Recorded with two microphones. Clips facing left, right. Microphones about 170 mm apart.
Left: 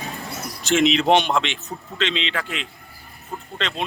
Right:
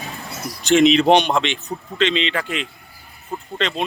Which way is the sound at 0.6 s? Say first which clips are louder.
Right 5 dB; centre (ahead or behind).